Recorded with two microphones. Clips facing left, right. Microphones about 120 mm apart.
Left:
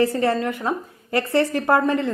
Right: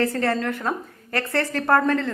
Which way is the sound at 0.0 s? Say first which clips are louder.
Left 3 dB; 15° left (ahead or behind).